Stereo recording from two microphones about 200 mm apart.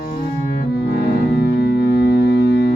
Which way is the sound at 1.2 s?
55° left (ahead or behind).